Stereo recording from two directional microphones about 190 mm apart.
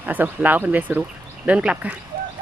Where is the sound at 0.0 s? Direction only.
10° right (ahead or behind).